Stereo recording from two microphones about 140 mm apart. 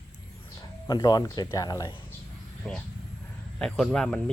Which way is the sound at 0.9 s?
30° left (ahead or behind).